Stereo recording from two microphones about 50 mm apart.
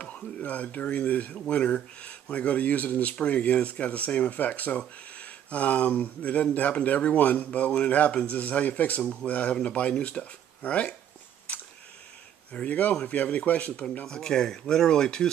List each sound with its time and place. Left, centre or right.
0.0 s speech: left
11.5 s a sound: left
12.5 s speech: left
14.0 s speech: centre